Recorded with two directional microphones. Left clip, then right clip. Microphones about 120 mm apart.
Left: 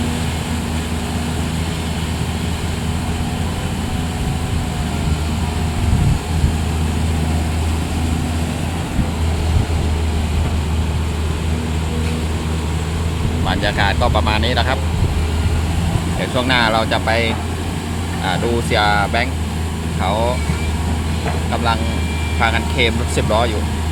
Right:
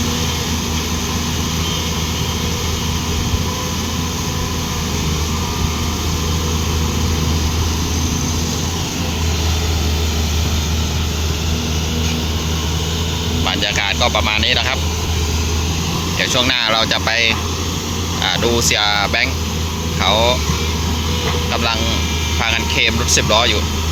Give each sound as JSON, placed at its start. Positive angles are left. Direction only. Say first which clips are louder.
{"t": 13.6, "sound": "speech", "louder": "even", "side_deg": 20}
{"t": 16.3, "sound": "speech", "louder": "left 1 dB", "side_deg": 20}
{"t": 21.5, "sound": "speech", "louder": "even", "side_deg": 10}